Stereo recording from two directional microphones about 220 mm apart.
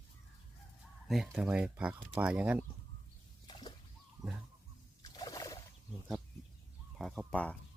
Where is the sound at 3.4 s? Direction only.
20° left (ahead or behind).